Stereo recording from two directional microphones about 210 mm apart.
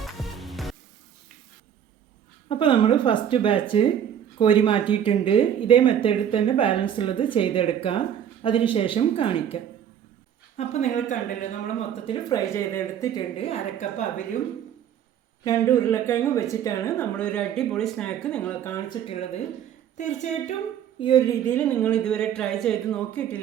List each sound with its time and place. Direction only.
0.0 s music: centre (ahead or behind)
2.5 s speech: 25° left (ahead or behind)
10.6 s speech: 30° left (ahead or behind)
11.8 s speech: 25° left (ahead or behind)
13.3 s speech: 30° left (ahead or behind)
15.4 s speech: 15° left (ahead or behind)
19.0 s speech: 30° left (ahead or behind)
21.0 s a woman's voice: 20° left (ahead or behind)